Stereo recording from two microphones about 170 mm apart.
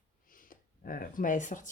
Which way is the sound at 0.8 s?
55° left (ahead or behind).